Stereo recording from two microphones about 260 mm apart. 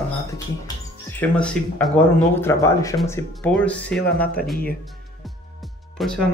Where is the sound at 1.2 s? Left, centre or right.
Centre.